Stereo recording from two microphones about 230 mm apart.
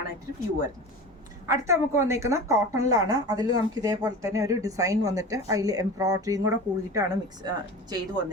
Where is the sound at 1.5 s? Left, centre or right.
Centre.